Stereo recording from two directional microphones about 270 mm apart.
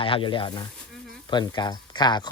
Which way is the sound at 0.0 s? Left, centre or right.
Centre.